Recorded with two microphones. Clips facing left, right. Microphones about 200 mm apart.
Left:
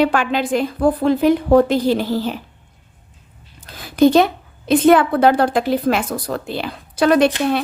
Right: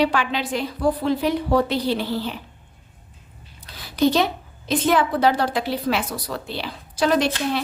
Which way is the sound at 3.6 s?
50° left (ahead or behind).